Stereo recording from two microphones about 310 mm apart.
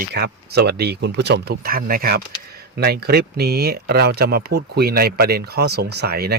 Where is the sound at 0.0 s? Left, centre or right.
Right.